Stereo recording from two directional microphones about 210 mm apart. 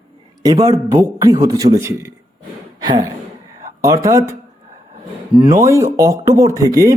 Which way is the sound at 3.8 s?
15° right (ahead or behind).